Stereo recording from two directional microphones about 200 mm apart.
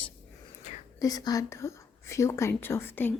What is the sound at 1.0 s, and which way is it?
Speech, 20° left (ahead or behind).